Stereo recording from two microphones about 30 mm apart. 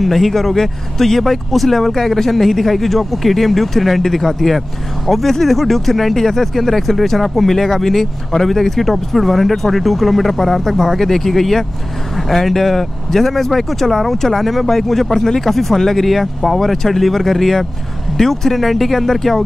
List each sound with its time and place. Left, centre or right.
0.0 s speech: centre
15.0 s speech: centre